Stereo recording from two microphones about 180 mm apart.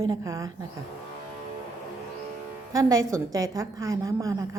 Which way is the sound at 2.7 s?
20° right (ahead or behind).